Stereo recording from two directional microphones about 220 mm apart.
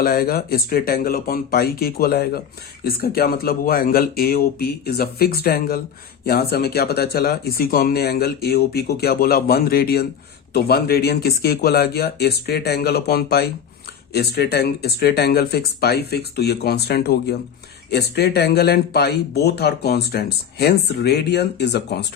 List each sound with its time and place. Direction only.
0.0 s speech: 45° left (ahead or behind)